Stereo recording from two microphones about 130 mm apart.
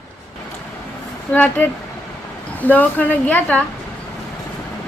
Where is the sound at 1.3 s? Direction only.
15° left (ahead or behind).